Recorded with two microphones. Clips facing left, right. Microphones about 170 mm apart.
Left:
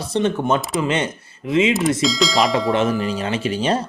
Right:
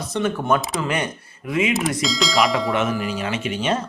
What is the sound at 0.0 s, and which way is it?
Speech, 30° left (ahead or behind).